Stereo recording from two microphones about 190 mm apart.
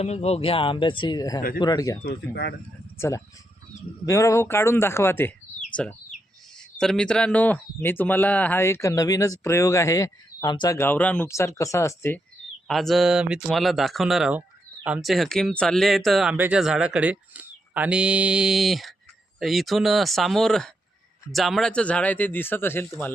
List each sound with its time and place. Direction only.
0.0 s speech: 35° left (ahead or behind); by 2.0 s 20° left (ahead or behind)
2.0 s speech: 65° left (ahead or behind)
4.0 s speech: 15° left (ahead or behind)
12.6 s speech: centre (ahead or behind)